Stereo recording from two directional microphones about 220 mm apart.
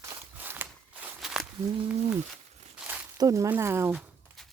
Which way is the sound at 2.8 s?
5° right (ahead or behind).